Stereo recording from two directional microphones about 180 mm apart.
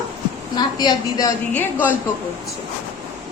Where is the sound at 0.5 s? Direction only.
20° left (ahead or behind).